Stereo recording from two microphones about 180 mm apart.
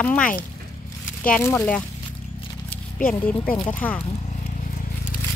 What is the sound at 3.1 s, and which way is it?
Speech, 10° left (ahead or behind).